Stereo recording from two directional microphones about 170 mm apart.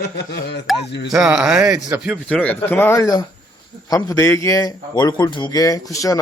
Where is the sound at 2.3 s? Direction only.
5° left (ahead or behind).